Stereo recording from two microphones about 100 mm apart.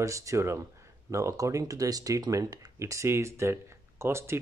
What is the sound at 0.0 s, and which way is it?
Speech, 30° right (ahead or behind).